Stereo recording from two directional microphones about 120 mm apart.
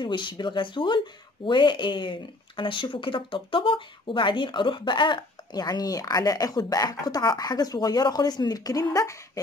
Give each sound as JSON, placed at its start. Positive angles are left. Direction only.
{"t": 0.0, "sound": "speech", "side_deg": 40}